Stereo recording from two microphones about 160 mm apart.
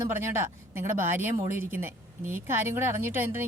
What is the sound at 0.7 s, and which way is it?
A woman's voice, 15° right (ahead or behind).